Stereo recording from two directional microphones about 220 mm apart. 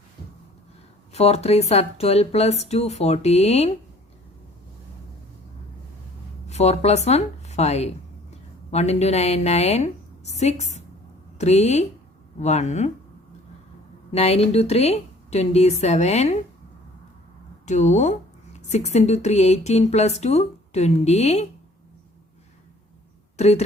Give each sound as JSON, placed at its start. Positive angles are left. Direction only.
{"t": 1.1, "sound": "speech", "side_deg": 30}
{"t": 6.5, "sound": "speech", "side_deg": 30}
{"t": 14.1, "sound": "speech", "side_deg": 30}
{"t": 17.7, "sound": "speech", "side_deg": 35}
{"t": 23.4, "sound": "speech", "side_deg": 30}